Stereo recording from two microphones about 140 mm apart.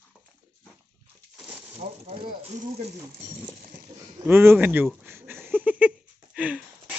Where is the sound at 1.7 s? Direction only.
45° right (ahead or behind).